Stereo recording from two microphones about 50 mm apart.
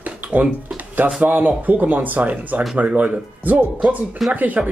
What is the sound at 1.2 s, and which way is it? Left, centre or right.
Speech, right.